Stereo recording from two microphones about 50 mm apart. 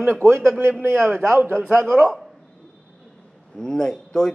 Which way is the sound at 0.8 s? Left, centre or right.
Right.